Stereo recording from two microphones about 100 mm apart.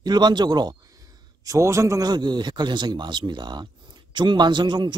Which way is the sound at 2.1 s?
45° right (ahead or behind).